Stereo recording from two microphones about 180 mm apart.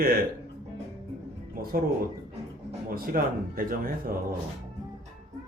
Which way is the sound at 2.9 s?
55° right (ahead or behind).